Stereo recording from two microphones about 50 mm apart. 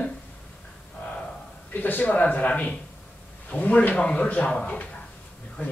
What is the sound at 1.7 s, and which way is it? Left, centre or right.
Speech, left.